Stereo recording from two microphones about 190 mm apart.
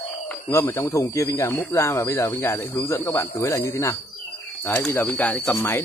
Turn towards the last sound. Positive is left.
turn(degrees=15)  # may be behind; listen again after turning